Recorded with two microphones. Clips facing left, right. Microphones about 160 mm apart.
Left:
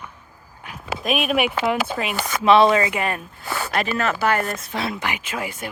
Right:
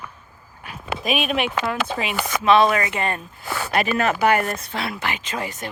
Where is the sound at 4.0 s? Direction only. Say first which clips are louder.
Right 3 dB; 15° right (ahead or behind).